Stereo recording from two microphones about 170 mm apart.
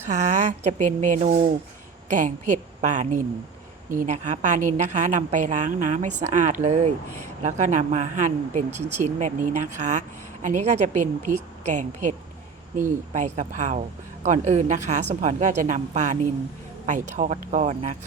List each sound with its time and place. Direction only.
0.1 s a woman's voice: 45° right (ahead or behind)